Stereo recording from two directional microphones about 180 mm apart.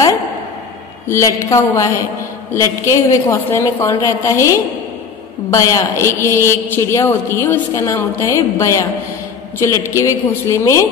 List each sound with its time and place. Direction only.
1.0 s a woman's voice: 15° left (ahead or behind)